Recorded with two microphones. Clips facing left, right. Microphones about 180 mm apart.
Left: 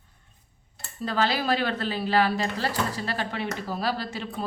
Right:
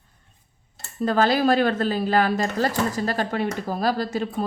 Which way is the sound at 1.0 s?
45° right (ahead or behind).